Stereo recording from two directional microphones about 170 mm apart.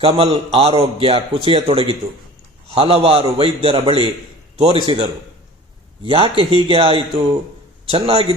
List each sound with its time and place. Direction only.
0.0 s a man's voice: 35° right (ahead or behind)